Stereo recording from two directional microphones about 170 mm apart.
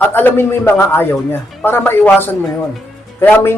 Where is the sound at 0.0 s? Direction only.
10° left (ahead or behind).